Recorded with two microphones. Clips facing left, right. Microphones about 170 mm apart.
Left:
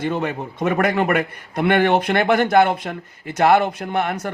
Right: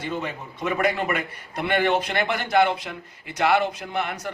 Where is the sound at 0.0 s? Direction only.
55° left (ahead or behind).